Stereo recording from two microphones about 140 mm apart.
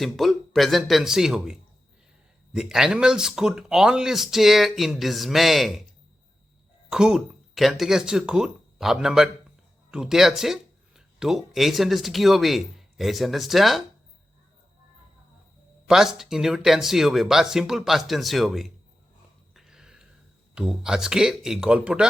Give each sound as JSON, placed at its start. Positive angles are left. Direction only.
{"t": 0.0, "sound": "speech", "side_deg": 0}
{"t": 6.9, "sound": "speech", "side_deg": -5}
{"t": 15.9, "sound": "speech", "side_deg": -5}
{"t": 19.5, "sound": "a sound", "side_deg": -5}
{"t": 20.6, "sound": "speech", "side_deg": -5}